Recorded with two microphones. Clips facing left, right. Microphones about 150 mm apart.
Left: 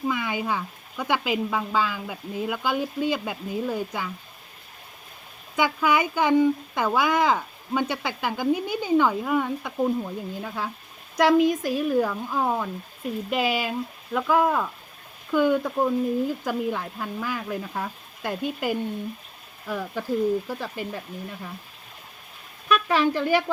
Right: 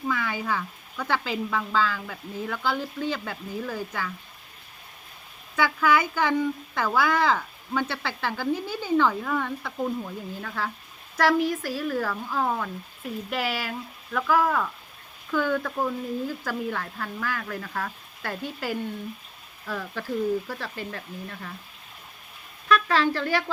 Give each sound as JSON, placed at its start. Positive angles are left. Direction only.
{"t": 0.1, "sound": "speech", "side_deg": 15}
{"t": 5.5, "sound": "speech", "side_deg": 15}
{"t": 22.7, "sound": "speech", "side_deg": 15}